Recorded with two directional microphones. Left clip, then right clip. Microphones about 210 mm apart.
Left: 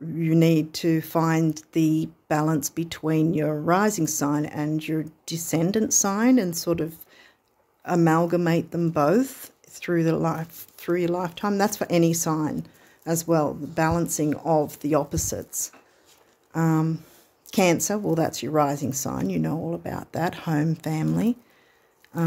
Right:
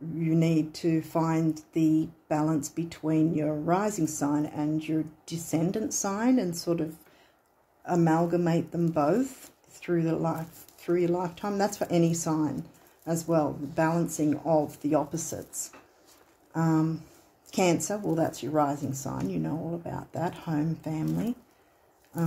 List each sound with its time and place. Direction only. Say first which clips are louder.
0.2 s speech: left 6 dB; 40° left (ahead or behind)